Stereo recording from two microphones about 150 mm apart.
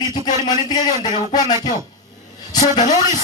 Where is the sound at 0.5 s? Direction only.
25° left (ahead or behind).